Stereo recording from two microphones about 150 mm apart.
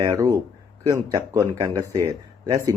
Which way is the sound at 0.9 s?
20° right (ahead or behind).